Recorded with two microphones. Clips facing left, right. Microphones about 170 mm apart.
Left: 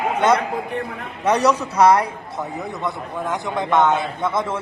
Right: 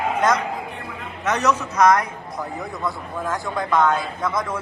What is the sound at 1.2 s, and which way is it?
Speech, 35° left (ahead or behind).